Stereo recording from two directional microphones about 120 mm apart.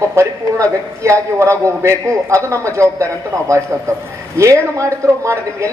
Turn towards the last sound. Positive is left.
turn(degrees=-25)  # may be behind; listen again after turning